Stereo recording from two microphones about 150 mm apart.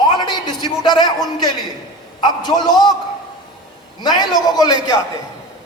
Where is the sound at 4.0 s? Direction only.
30° left (ahead or behind).